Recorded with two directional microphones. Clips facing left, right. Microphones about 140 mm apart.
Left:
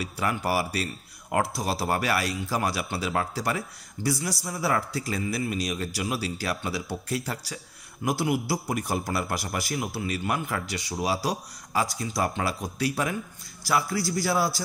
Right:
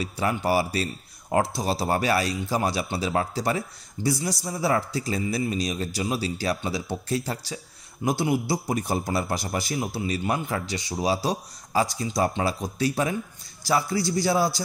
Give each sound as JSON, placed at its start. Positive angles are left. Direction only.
{"t": 0.0, "sound": "a man's voice", "side_deg": -25}